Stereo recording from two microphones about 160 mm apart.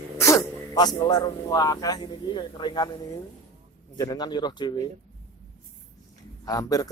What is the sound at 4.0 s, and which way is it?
Speech, 25° left (ahead or behind).